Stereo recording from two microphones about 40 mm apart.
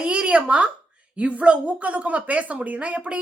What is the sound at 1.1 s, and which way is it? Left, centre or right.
A woman's voice, right.